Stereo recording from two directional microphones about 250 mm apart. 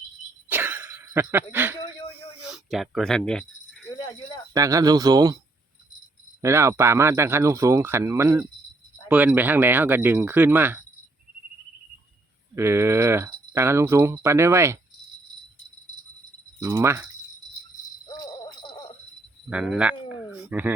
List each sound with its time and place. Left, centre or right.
0.4 s cough: centre
2.5 s keys jangling: centre
4.5 s speech: centre
6.4 s speech: centre
12.5 s speech: centre
16.6 s speech: centre
18.2 s jingle bell: centre
19.5 s speech: centre